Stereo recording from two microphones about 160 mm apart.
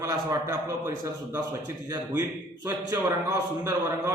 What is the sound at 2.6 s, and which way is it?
Speech, 20° right (ahead or behind).